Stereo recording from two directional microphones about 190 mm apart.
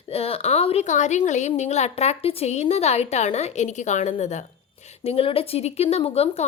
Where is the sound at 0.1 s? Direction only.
30° left (ahead or behind).